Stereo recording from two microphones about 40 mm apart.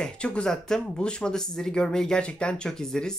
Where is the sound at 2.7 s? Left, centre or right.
Centre.